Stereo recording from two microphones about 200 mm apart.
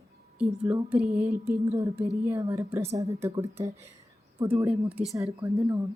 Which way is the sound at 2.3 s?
15° right (ahead or behind).